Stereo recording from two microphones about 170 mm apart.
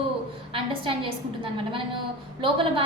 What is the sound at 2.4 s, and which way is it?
Speech, 30° right (ahead or behind).